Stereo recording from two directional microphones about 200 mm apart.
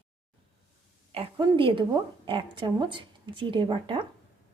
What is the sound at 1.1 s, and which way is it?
Speech, 25° right (ahead or behind).